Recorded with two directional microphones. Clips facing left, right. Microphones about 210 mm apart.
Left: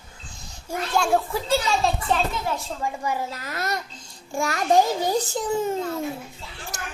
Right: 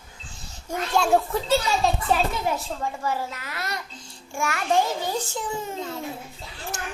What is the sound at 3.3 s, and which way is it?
A child's voice, 40° left (ahead or behind).